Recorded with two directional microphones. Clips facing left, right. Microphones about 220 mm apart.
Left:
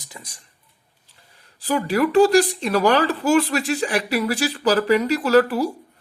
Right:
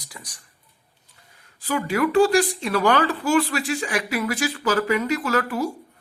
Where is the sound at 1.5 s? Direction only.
35° left (ahead or behind).